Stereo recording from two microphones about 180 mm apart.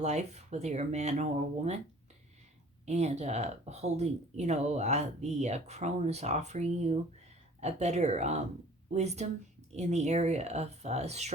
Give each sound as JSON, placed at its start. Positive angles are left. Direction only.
{"t": 0.0, "sound": "speech", "side_deg": -40}
{"t": 2.8, "sound": "speech", "side_deg": -40}